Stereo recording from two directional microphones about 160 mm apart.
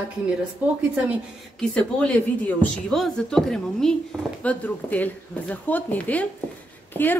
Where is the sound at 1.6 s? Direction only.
5° left (ahead or behind).